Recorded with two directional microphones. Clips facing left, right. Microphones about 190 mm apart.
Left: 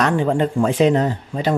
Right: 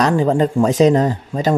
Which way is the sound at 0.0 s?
40° right (ahead or behind).